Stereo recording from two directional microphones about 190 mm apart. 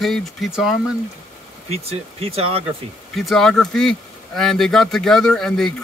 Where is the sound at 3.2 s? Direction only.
Centre (ahead or behind).